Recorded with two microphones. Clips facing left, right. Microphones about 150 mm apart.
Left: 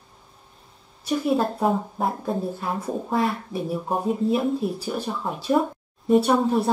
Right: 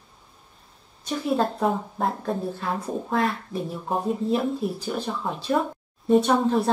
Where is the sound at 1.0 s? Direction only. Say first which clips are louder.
Left 2 dB; 5° left (ahead or behind).